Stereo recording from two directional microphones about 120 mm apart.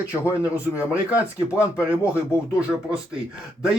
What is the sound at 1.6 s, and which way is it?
Speech, 25° left (ahead or behind).